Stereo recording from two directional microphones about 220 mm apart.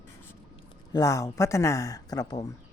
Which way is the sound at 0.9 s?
15° left (ahead or behind).